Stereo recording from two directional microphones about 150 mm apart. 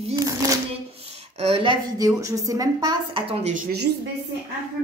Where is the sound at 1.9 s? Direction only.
25° right (ahead or behind).